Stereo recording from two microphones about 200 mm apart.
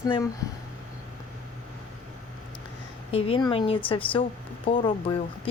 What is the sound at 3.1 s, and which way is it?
Speech, 30° left (ahead or behind).